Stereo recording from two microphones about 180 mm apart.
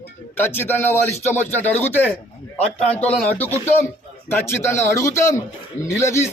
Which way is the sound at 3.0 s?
5° left (ahead or behind).